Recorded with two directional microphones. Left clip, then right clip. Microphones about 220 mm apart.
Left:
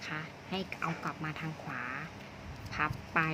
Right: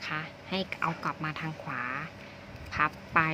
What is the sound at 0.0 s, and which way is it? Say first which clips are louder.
A woman's voice: right 5 dB; 20° right (ahead or behind).